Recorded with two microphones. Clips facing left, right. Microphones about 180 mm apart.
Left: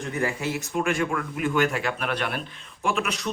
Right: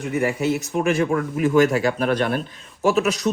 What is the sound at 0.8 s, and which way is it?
A man's voice, 40° right (ahead or behind).